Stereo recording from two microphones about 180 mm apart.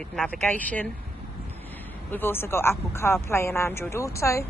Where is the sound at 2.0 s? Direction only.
10° left (ahead or behind).